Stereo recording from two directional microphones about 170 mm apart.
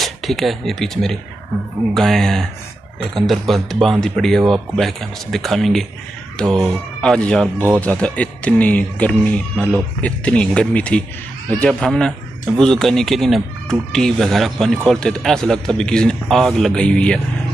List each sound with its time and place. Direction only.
0.0 s speech: centre (ahead or behind)